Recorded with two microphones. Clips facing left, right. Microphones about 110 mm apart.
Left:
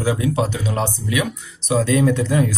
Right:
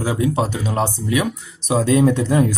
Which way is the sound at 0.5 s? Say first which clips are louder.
Right 1 dB; 40° right (ahead or behind).